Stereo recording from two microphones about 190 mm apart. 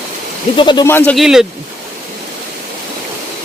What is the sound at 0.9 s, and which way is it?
Speech, 10° left (ahead or behind).